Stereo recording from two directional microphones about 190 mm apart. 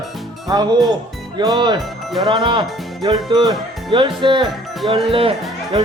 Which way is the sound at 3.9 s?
25° right (ahead or behind).